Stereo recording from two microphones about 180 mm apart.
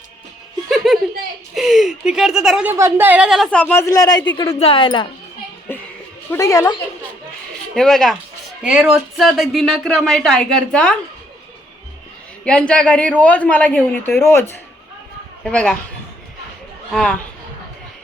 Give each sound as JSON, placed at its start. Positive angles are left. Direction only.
{"t": 1.5, "sound": "speech", "side_deg": 0}
{"t": 5.7, "sound": "a sound", "side_deg": 10}
{"t": 6.3, "sound": "speech", "side_deg": 20}
{"t": 7.8, "sound": "speech", "side_deg": 0}
{"t": 12.5, "sound": "speech", "side_deg": 5}
{"t": 16.9, "sound": "speech", "side_deg": 5}